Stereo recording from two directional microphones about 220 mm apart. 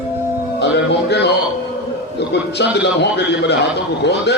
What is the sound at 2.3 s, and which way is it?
A man's voice, 50° left (ahead or behind).